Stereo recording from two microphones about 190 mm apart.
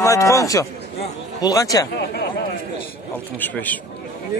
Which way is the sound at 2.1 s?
55° left (ahead or behind).